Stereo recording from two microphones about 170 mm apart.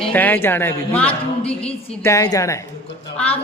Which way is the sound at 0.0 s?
10° left (ahead or behind).